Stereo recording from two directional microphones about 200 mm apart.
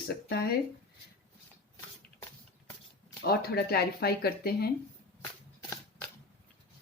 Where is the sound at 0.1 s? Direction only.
55° left (ahead or behind).